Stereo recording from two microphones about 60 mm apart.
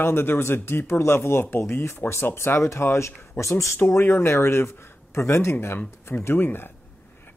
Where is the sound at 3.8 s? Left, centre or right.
Left.